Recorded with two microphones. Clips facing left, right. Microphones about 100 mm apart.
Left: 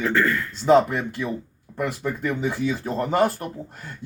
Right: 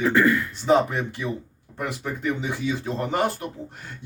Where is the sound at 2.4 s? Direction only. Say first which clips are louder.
Left 2 dB; 50° left (ahead or behind).